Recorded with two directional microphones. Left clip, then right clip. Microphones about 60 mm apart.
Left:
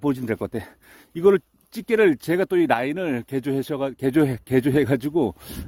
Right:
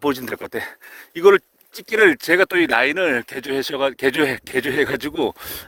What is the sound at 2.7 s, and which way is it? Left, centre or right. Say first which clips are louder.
Speech: right 5 dB; left.